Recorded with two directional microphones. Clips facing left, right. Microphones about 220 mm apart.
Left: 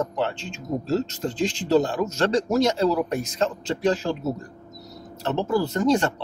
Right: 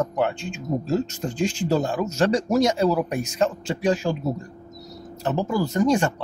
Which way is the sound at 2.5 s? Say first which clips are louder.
Right 1 dB; 15° right (ahead or behind).